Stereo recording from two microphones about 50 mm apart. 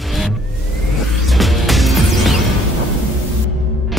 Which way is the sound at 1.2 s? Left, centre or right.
Centre.